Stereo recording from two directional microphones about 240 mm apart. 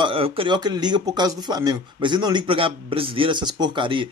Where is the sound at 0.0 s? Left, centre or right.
Right.